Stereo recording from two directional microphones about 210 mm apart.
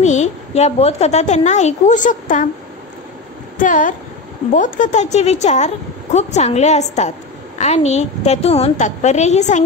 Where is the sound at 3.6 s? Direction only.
40° left (ahead or behind).